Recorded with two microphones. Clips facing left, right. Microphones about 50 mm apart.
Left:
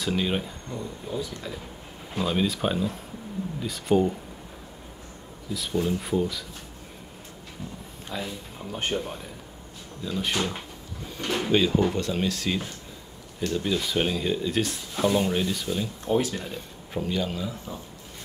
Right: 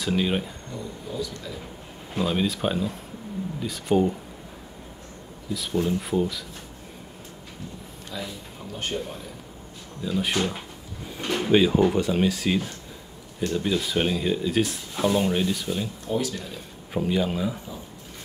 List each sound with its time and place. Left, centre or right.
0.0 s speech: centre
1.1 s speech: left
2.1 s speech: centre
5.5 s speech: centre
8.1 s speech: left
8.9 s speech: centre
16.2 s speech: left
16.4 s speech: centre